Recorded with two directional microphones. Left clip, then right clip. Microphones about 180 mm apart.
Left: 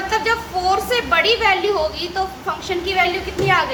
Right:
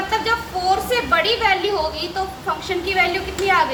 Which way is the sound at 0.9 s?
25° left (ahead or behind).